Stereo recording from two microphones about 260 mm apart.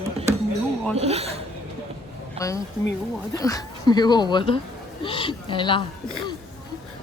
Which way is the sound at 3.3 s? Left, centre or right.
Centre.